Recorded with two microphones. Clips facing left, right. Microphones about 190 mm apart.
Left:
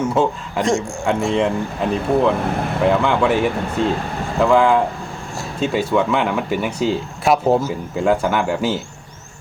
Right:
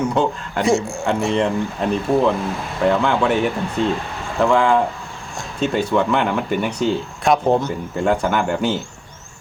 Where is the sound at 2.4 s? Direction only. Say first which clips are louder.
Left 4 dB; 60° left (ahead or behind).